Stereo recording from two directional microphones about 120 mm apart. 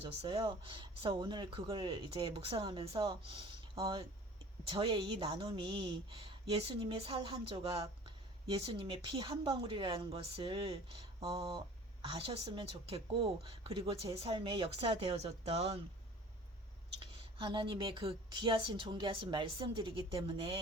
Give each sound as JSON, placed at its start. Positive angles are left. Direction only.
{"t": 0.2, "sound": "a woman's voice", "side_deg": -50}
{"t": 12.0, "sound": "a woman's voice", "side_deg": -50}
{"t": 17.0, "sound": "a woman's voice", "side_deg": -50}